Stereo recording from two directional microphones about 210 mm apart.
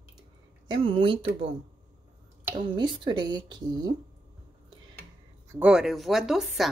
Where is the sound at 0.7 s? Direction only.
25° right (ahead or behind).